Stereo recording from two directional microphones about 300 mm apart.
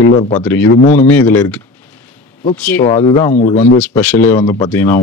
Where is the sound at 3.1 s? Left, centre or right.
Centre.